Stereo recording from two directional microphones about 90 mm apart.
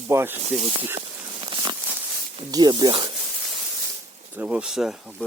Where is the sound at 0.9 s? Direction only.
75° right (ahead or behind); by 1.7 s 60° right (ahead or behind).